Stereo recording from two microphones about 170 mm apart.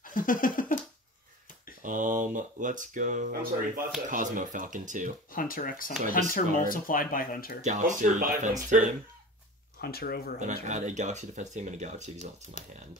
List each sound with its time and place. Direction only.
0.0 s a sound: 55° left (ahead or behind)
1.8 s speech: 50° right (ahead or behind)
5.3 s speech: 55° left (ahead or behind)
7.6 s speech: 50° right (ahead or behind)
9.8 s speech: 65° left (ahead or behind)
10.4 s speech: 45° right (ahead or behind)